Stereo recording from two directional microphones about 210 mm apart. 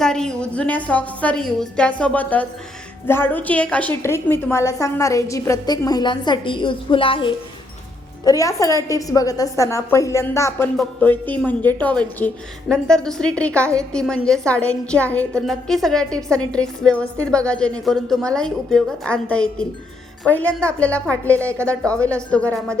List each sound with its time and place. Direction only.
0.0 s a woman's voice: 5° left (ahead or behind)
21.6 s a woman's voice: 15° right (ahead or behind)
22.0 s a woman's voice: 5° left (ahead or behind)